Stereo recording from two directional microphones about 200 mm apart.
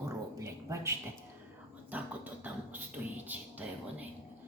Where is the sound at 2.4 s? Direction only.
10° right (ahead or behind).